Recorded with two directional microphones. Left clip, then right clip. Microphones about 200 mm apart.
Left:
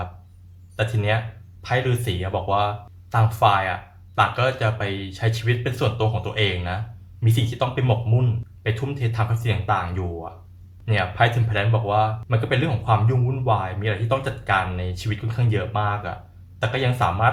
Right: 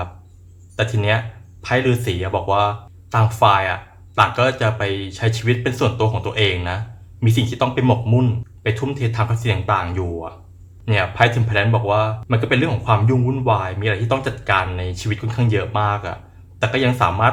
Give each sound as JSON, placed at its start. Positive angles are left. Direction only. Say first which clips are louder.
{"t": 0.8, "sound": "speech", "louder": "right 4 dB", "side_deg": -20}